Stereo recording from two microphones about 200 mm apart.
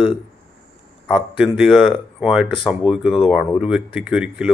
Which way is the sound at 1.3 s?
5° right (ahead or behind).